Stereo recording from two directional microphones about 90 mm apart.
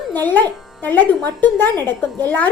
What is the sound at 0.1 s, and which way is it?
A woman's voice, 20° left (ahead or behind).